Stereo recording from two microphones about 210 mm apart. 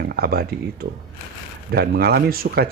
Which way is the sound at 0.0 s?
45° right (ahead or behind).